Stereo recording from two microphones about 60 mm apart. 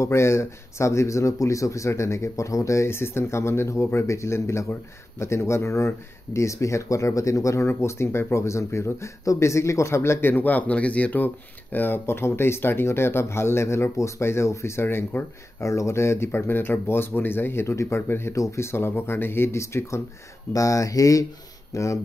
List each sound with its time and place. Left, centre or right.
0.0 s speech: left
10.3 s speech: left
15.6 s speech: left
18.3 s speech: left
19.6 s speech: left
20.5 s speech: left